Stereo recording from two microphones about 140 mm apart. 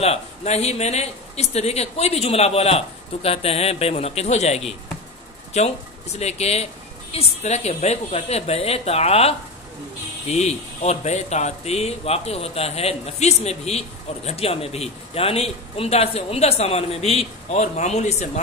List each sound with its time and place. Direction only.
0.0 s speech: 50° left (ahead or behind)
6.1 s speech: 50° left (ahead or behind)